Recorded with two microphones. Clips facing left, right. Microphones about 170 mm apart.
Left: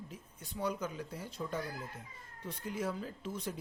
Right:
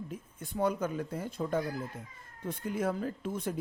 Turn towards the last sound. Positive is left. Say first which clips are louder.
# right 6 dB
turn(degrees=-50)  # may be behind; listen again after turning